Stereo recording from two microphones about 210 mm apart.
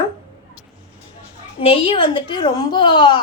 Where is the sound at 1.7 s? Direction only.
25° left (ahead or behind).